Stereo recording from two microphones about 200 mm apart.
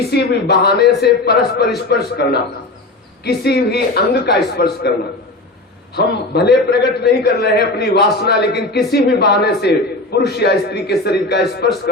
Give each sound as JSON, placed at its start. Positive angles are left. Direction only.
{"t": 0.1, "sound": "a man's voice", "side_deg": 55}
{"t": 5.9, "sound": "a man's voice", "side_deg": 55}